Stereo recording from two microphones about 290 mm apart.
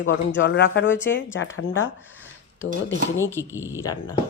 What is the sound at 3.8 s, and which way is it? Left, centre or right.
Speech, centre.